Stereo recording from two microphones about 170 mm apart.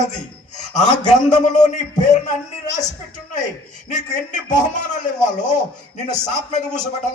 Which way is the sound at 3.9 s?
45° left (ahead or behind).